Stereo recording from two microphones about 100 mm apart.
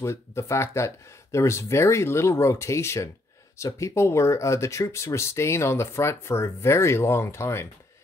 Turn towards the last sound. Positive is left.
turn(degrees=25)  # may be behind; listen again after turning